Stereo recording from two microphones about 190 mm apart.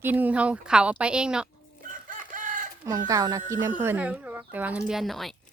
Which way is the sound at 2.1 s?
45° right (ahead or behind).